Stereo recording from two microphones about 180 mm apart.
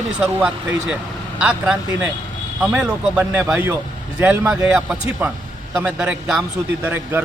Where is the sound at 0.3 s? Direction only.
5° right (ahead or behind).